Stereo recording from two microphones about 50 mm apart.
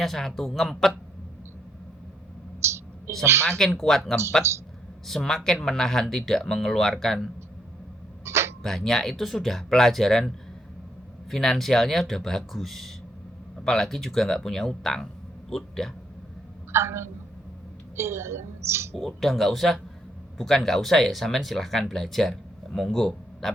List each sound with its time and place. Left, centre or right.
0.0 s speech: centre
2.6 s a sound: right
3.2 s a woman's voice: right
3.8 s speech: centre
8.2 s a sound: right
8.6 s speech: centre
16.7 s a woman's voice: right
18.9 s speech: centre
23.4 s hiccup: centre